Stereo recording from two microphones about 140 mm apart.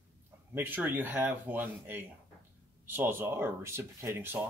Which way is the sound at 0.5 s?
15° right (ahead or behind).